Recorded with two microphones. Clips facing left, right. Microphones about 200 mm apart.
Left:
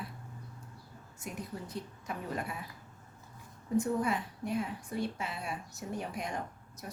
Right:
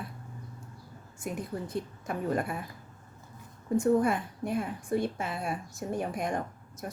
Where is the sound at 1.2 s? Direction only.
50° right (ahead or behind).